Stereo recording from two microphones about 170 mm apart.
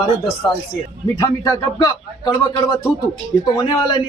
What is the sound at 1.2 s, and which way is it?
A man's voice, 25° left (ahead or behind).